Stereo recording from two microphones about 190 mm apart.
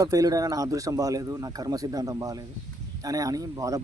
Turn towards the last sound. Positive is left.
turn(degrees=-15)  # may be behind; listen again after turning